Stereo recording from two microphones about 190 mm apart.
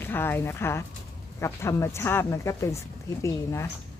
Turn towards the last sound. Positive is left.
turn(degrees=15)  # may be behind; listen again after turning